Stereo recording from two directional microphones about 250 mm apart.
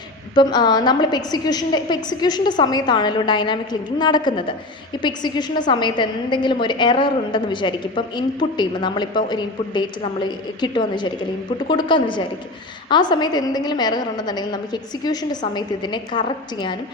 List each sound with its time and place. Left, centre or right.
0.3 s a woman's voice: centre